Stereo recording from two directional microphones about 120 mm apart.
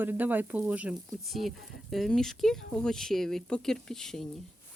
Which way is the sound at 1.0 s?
Centre (ahead or behind).